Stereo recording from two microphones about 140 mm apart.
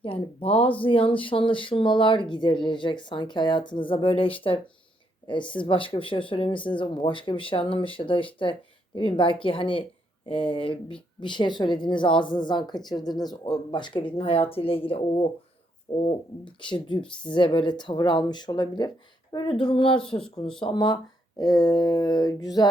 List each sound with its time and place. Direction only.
0.0 s speech: 40° left (ahead or behind)